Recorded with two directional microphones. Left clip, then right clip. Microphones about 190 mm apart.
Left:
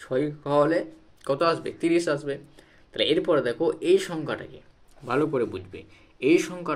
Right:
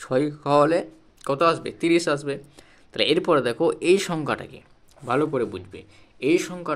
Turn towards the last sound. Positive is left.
turn(degrees=-15)  # may be behind; listen again after turning